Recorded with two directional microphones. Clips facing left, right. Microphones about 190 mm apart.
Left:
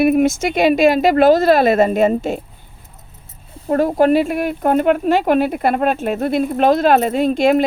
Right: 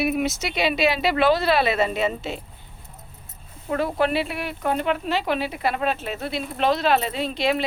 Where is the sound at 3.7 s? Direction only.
45° left (ahead or behind).